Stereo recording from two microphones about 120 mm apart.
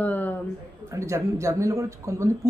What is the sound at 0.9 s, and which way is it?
Speech, 25° right (ahead or behind).